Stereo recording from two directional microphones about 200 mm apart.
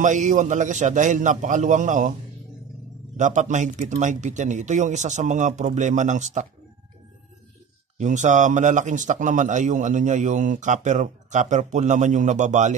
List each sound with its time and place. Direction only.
0.0 s a man's voice: 40° right (ahead or behind)
3.2 s a man's voice: 40° right (ahead or behind)
8.0 s a man's voice: 35° right (ahead or behind)